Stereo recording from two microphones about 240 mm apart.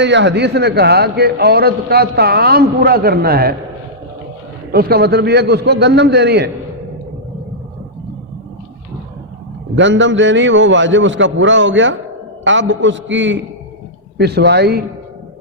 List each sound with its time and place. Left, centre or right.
0.0 s a man's voice: right
4.7 s a man's voice: right
9.7 s a man's voice: right